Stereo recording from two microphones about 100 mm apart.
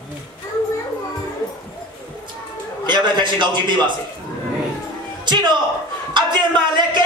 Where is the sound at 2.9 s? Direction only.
50° right (ahead or behind).